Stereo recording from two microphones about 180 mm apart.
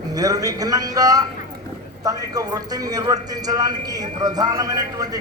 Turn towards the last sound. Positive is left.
turn(degrees=-20)  # may be behind; listen again after turning